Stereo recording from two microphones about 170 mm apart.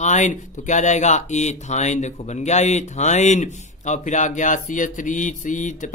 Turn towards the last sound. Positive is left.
turn(degrees=50)  # may be behind; listen again after turning